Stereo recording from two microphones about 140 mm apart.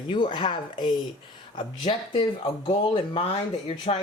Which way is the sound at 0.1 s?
35° left (ahead or behind).